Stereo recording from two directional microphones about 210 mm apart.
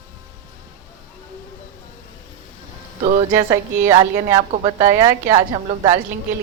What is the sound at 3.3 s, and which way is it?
A woman's voice, 15° right (ahead or behind).